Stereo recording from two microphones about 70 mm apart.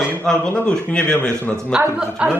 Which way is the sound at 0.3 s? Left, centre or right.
Centre.